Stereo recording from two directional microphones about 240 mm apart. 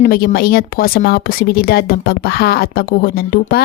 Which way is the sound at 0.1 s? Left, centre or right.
Left.